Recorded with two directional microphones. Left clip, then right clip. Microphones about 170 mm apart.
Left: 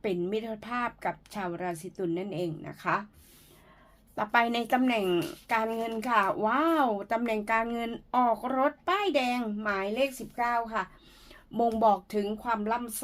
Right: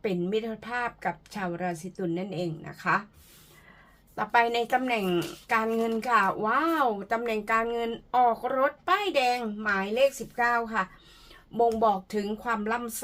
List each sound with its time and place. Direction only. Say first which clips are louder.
0.0 s speech: right 2 dB; 35° left (ahead or behind)
4.1 s speech: right 2 dB; 40° left (ahead or behind)